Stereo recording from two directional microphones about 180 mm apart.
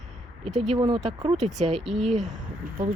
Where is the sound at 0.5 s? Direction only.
35° right (ahead or behind).